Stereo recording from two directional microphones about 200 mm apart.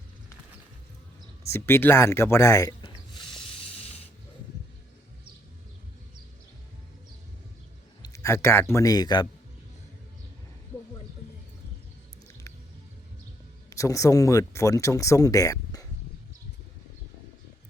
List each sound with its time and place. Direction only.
1.5 s speech: 10° left (ahead or behind)
8.0 s speech: 15° left (ahead or behind)
13.7 s speech: 15° left (ahead or behind)